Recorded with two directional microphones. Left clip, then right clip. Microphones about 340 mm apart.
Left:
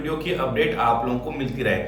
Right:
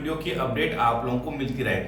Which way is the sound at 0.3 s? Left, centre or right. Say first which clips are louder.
Left 4 dB; centre.